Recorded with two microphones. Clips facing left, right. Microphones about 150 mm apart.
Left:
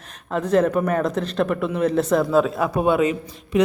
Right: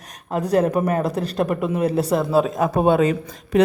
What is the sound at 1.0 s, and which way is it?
Speech, 10° right (ahead or behind).